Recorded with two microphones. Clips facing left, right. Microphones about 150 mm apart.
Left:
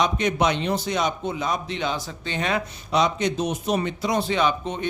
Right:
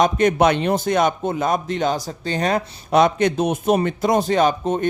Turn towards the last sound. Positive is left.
turn(degrees=-45)  # may be behind; listen again after turning